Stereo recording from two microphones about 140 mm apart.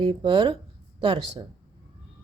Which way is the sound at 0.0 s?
35° right (ahead or behind).